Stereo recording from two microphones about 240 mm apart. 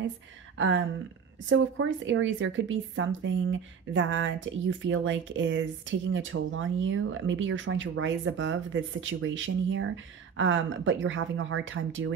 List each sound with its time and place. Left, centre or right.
0.6 s speech: right